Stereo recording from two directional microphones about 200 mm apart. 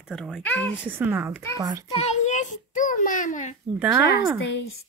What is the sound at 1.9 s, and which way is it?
A child's voice, 35° left (ahead or behind).